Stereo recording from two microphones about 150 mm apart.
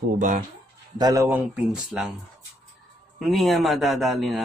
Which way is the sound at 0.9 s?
25° right (ahead or behind).